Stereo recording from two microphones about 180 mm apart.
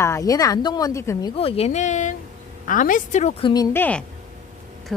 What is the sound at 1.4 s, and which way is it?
A woman's voice, 35° left (ahead or behind).